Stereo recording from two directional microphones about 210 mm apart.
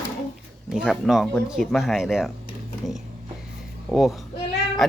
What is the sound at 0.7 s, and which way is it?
Speech, centre (ahead or behind).